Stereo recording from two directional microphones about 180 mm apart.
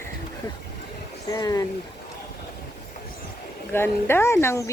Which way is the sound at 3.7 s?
15° left (ahead or behind).